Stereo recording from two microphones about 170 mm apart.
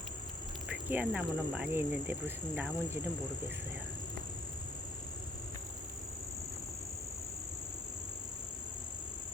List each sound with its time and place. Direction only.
0.7 s speech: 10° right (ahead or behind)